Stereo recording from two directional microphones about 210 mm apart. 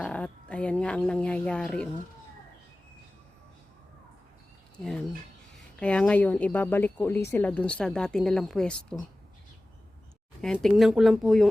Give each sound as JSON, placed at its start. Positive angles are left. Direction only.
{"t": 0.0, "sound": "speech", "side_deg": 5}
{"t": 5.8, "sound": "speech", "side_deg": 5}
{"t": 10.4, "sound": "speech", "side_deg": 0}